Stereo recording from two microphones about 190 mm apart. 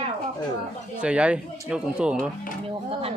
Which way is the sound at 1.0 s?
5° right (ahead or behind).